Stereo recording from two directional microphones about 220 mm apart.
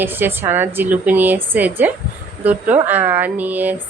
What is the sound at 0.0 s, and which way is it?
A woman's voice, 10° right (ahead or behind).